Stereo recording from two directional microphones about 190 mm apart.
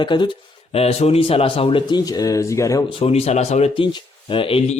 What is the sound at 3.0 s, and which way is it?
Speech, 35° left (ahead or behind).